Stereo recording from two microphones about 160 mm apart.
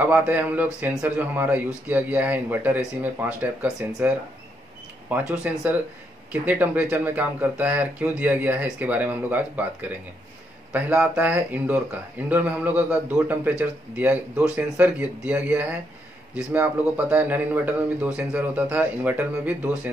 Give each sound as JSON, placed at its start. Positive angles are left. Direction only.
{"t": 0.0, "sound": "a man's voice", "side_deg": -10}
{"t": 5.4, "sound": "a man's voice", "side_deg": -5}